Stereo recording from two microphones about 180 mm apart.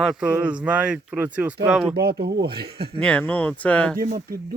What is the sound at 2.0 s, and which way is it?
Speech, 60° right (ahead or behind).